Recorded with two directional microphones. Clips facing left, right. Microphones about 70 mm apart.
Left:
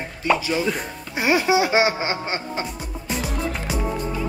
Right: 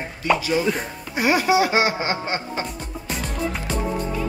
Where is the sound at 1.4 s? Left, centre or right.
Left.